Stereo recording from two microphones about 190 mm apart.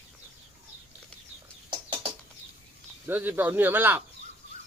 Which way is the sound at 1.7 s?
25° right (ahead or behind).